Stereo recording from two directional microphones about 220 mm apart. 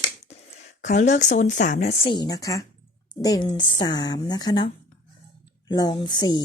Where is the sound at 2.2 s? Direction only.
15° left (ahead or behind).